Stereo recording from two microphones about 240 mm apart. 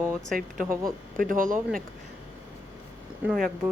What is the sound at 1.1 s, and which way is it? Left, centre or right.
Speech, right.